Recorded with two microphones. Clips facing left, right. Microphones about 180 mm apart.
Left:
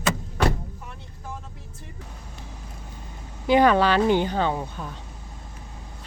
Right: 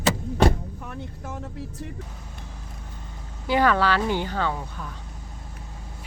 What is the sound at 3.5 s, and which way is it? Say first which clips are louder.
A woman's voice: left 3 dB; 20° left (ahead or behind).